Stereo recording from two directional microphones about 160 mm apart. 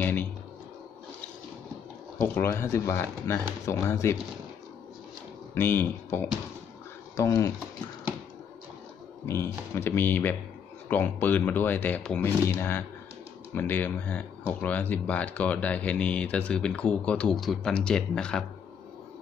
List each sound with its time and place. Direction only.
0.0 s a sound: 10° left (ahead or behind)
2.2 s speech: 15° left (ahead or behind)
5.5 s speech: 15° left (ahead or behind)
9.2 s speech: 15° left (ahead or behind)